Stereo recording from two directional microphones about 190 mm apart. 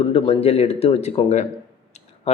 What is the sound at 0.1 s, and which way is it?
A man's voice, 30° left (ahead or behind).